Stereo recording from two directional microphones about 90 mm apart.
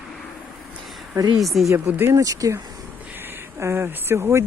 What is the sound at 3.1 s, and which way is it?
Speech, 25° right (ahead or behind).